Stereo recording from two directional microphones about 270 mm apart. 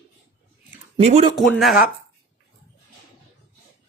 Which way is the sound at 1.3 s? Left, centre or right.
Centre.